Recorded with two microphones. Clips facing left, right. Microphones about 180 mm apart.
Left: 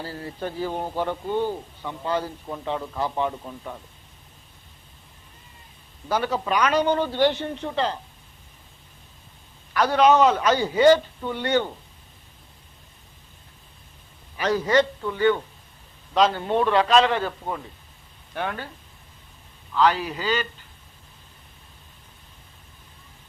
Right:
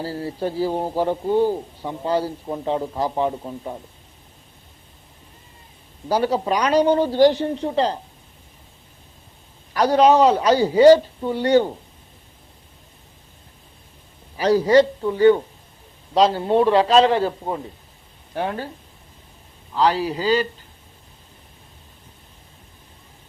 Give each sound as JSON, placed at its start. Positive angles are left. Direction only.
{"t": 0.0, "sound": "a man's voice", "side_deg": -35}
{"t": 6.1, "sound": "a man's voice", "side_deg": -35}
{"t": 9.7, "sound": "a man's voice", "side_deg": -35}
{"t": 14.3, "sound": "a man's voice", "side_deg": -35}
{"t": 19.7, "sound": "a man's voice", "side_deg": -35}